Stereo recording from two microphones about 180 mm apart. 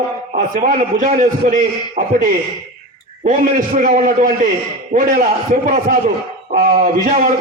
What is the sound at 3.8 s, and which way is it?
A man's voice, 45° right (ahead or behind).